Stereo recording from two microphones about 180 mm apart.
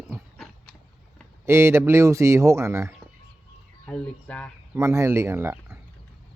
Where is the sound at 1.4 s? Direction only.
15° right (ahead or behind).